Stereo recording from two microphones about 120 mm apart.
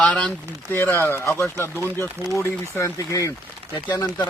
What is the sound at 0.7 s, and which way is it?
Speech, 20° left (ahead or behind).